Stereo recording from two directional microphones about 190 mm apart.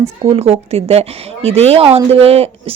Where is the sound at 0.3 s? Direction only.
30° right (ahead or behind).